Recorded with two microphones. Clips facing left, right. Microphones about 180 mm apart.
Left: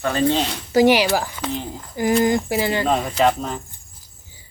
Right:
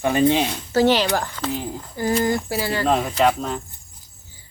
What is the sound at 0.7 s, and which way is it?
Speech, 10° left (ahead or behind).